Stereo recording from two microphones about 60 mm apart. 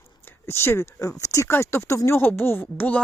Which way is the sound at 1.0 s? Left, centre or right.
Left.